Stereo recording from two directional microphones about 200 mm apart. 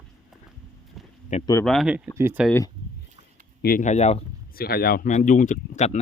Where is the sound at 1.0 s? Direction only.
Centre (ahead or behind).